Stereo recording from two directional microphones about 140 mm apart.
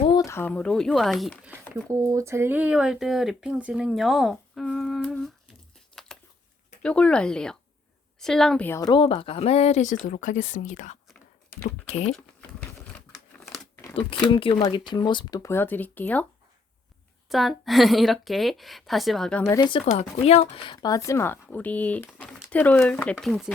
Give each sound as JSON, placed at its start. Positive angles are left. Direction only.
{"t": 0.0, "sound": "a sound", "side_deg": 30}
{"t": 0.3, "sound": "speech", "side_deg": 15}
{"t": 1.7, "sound": "speech", "side_deg": -20}
{"t": 6.8, "sound": "speech", "side_deg": 5}
{"t": 8.8, "sound": "speech", "side_deg": 35}
{"t": 14.3, "sound": "speech", "side_deg": 40}
{"t": 17.2, "sound": "speech", "side_deg": 0}
{"t": 19.9, "sound": "speech", "side_deg": 45}
{"t": 20.8, "sound": "speech", "side_deg": 25}